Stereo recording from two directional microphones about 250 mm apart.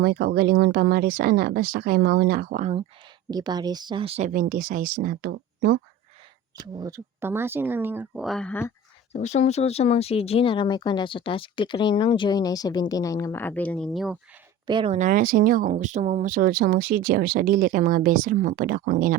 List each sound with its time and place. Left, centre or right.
0.0 s speech: right
3.2 s speech: centre; by 5.8 s right
6.6 s speech: centre
9.1 s speech: left; by 14.2 s centre
14.7 s speech: right